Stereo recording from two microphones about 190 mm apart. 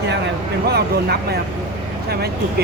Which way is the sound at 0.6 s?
55° right (ahead or behind).